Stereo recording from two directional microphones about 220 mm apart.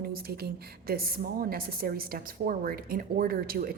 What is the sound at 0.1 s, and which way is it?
A woman's voice, 45° right (ahead or behind).